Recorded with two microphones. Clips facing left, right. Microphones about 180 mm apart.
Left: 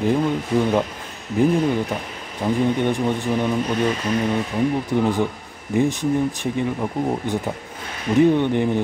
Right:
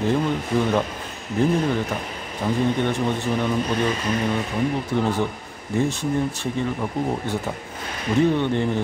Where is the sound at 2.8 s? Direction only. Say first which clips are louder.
Left 2 dB; 15° left (ahead or behind).